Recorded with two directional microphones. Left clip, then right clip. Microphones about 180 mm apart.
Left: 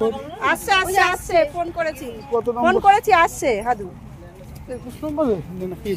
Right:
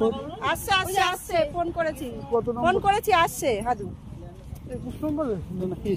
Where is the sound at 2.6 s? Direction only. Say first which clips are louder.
Left 9 dB; 50° right (ahead or behind).